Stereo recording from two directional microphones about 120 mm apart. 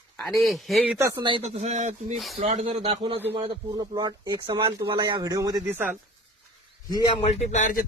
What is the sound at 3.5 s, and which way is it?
Speech, 35° right (ahead or behind).